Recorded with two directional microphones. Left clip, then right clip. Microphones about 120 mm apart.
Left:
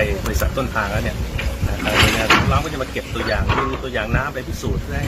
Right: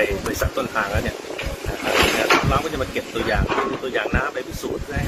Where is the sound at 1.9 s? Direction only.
15° left (ahead or behind).